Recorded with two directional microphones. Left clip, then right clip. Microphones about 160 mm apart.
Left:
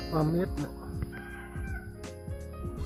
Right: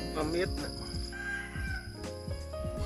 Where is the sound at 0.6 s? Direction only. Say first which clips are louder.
Left 1 dB; centre (ahead or behind).